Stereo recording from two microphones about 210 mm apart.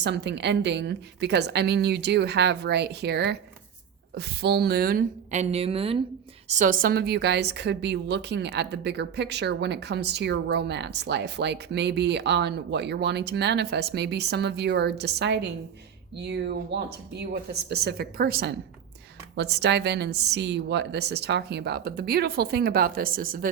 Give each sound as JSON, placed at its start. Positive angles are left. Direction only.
{"t": 0.0, "sound": "a woman's voice", "side_deg": -55}
{"t": 6.5, "sound": "a woman's voice", "side_deg": -40}